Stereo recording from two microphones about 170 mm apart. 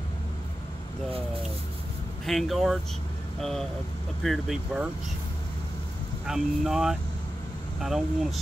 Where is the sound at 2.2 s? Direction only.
Centre (ahead or behind).